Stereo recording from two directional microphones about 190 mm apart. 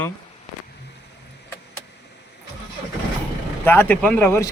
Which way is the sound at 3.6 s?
10° left (ahead or behind).